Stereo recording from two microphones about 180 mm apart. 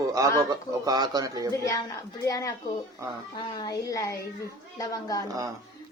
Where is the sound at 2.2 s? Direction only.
15° left (ahead or behind).